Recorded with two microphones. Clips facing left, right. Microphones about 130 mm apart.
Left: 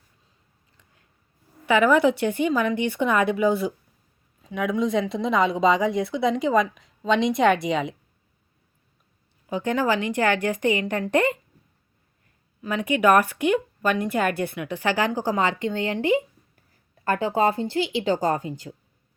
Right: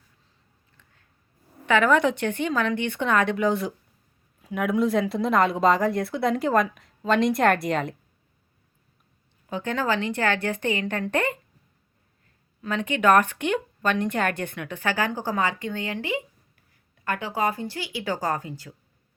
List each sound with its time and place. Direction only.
1.6 s speech: 10° left (ahead or behind)
9.5 s speech: 15° left (ahead or behind)
12.6 s speech: 10° left (ahead or behind)